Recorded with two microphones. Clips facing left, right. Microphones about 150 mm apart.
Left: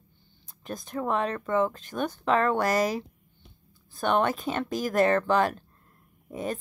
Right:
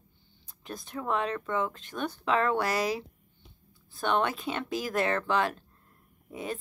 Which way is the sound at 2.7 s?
45° left (ahead or behind).